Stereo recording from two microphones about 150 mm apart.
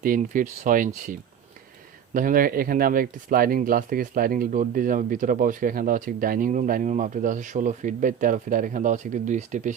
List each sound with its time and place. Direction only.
0.0 s speech: 65° right (ahead or behind)
2.1 s speech: 65° right (ahead or behind)